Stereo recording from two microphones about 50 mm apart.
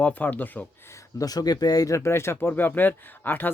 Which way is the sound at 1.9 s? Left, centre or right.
Left.